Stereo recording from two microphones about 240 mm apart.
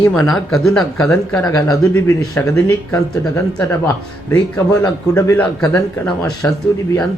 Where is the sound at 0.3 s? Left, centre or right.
Centre.